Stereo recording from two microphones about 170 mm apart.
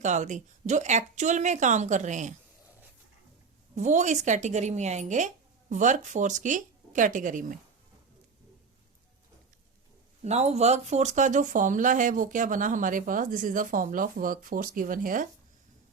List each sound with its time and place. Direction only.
0.0 s speech: 45° right (ahead or behind)
3.8 s speech: 45° right (ahead or behind)
10.2 s speech: 40° right (ahead or behind)